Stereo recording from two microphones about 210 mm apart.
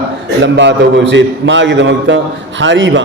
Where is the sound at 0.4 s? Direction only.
55° right (ahead or behind).